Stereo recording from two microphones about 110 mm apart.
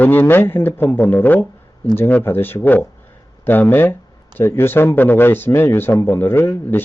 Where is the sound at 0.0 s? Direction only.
15° left (ahead or behind).